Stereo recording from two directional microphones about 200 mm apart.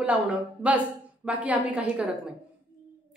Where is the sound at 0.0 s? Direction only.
5° right (ahead or behind).